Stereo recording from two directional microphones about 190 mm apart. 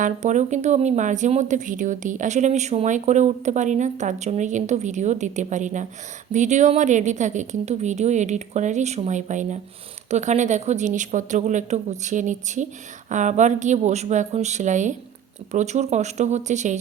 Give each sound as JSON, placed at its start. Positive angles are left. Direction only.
{"t": 0.0, "sound": "speech", "side_deg": -40}